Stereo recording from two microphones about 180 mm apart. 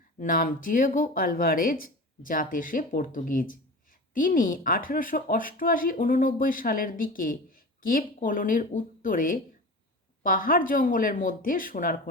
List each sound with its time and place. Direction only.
0.2 s speech: 50° left (ahead or behind)